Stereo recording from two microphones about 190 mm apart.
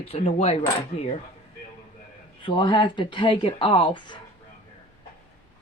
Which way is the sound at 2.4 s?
25° left (ahead or behind).